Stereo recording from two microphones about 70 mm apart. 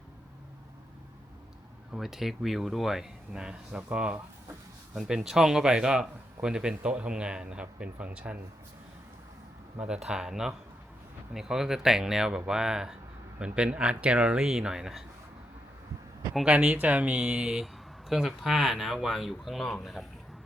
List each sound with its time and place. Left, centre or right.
1.9 s a man's voice: centre; by 8.4 s right
9.8 s a man's voice: centre
16.4 s a man's voice: centre